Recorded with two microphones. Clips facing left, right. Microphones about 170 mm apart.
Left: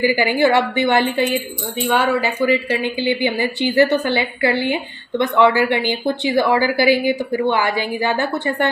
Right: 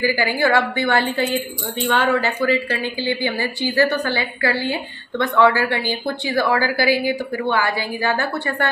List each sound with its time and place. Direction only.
0.0 s a woman's voice: 20° left (ahead or behind)